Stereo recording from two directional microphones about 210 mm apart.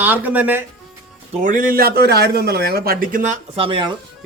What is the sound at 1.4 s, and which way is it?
A man's voice, 40° right (ahead or behind).